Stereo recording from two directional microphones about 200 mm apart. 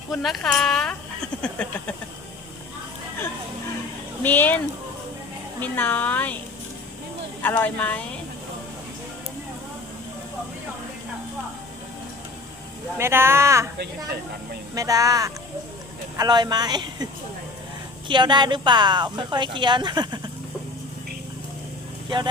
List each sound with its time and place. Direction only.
0.1 s speech: centre (ahead or behind)
4.2 s a woman's voice: 10° left (ahead or behind)
7.4 s a woman's voice: 10° left (ahead or behind)
13.0 s speech: 10° right (ahead or behind)
14.8 s speech: 15° right (ahead or behind)
18.1 s speech: 20° right (ahead or behind)